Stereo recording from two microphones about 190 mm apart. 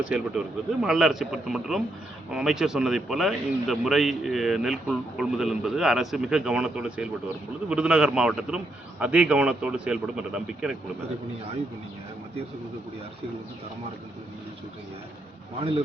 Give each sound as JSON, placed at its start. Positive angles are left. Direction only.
{"t": 0.1, "sound": "a man's voice", "side_deg": -5}